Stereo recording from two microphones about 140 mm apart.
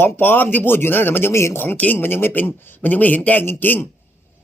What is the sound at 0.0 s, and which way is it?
Speech, 15° left (ahead or behind).